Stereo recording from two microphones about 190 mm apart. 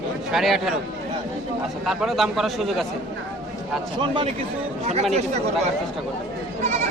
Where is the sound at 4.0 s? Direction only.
25° right (ahead or behind).